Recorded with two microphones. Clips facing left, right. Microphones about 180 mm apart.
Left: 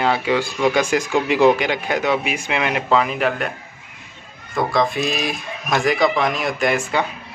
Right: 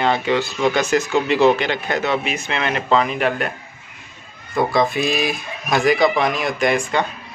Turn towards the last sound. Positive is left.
turn(degrees=5)  # may be behind; listen again after turning